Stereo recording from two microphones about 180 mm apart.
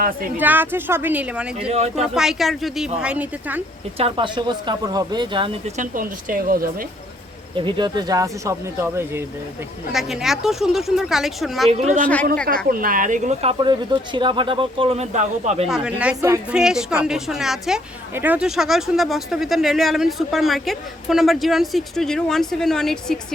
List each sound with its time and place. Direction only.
0.3 s speech: 10° right (ahead or behind)
1.7 s speech: 35° right (ahead or behind)
2.1 s speech: centre (ahead or behind)
3.9 s speech: 30° right (ahead or behind); by 6.8 s 55° right (ahead or behind)
7.5 s speech: 25° right (ahead or behind)
9.9 s speech: centre (ahead or behind)
11.7 s speech: 40° right (ahead or behind)
12.6 s speech: 50° right (ahead or behind)
15.6 s speech: 5° right (ahead or behind)